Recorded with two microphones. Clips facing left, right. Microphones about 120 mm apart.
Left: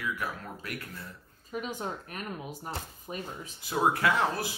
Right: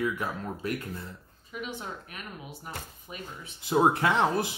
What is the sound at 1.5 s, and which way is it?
Speech, 40° left (ahead or behind).